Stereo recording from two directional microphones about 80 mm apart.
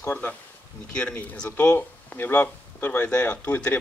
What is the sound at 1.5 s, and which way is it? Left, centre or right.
Speech, left.